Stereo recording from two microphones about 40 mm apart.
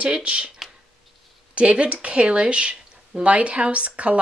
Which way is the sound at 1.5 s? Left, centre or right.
Right.